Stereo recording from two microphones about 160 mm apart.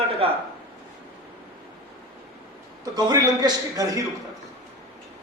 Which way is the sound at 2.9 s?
25° right (ahead or behind).